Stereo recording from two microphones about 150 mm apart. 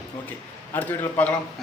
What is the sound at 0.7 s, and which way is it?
Speech, 10° left (ahead or behind).